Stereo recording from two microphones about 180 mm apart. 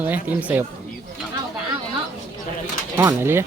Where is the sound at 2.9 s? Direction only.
15° right (ahead or behind).